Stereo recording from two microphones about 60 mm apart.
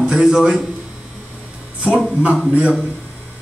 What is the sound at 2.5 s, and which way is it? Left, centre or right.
Speech, centre.